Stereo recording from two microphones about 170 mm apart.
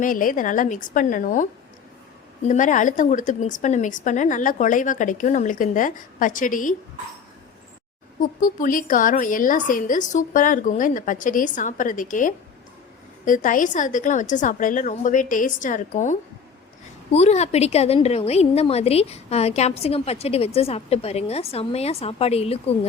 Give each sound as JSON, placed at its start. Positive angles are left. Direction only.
{"t": 0.0, "sound": "speech", "side_deg": 55}
{"t": 8.2, "sound": "a woman's voice", "side_deg": 50}